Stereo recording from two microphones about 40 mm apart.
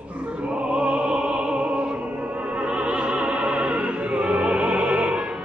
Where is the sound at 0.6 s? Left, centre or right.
Right.